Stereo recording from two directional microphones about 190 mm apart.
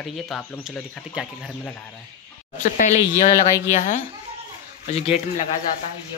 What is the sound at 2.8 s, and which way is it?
Speech, 40° left (ahead or behind).